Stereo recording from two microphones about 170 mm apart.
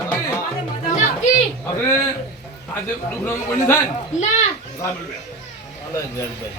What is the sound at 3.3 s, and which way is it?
Speech, 15° left (ahead or behind).